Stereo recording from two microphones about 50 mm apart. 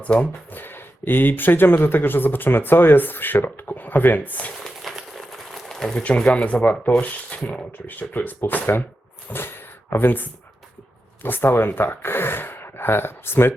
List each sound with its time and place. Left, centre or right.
0.5 s speech: left
5.1 s a sound: centre
6.0 s speech: left
7.9 s speech: left